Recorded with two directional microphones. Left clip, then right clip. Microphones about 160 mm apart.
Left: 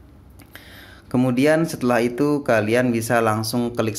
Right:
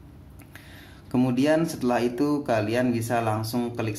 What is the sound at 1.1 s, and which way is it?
Speech, 30° left (ahead or behind).